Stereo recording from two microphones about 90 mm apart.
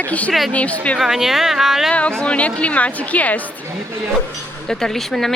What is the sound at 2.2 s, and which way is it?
A woman's voice, 15° left (ahead or behind).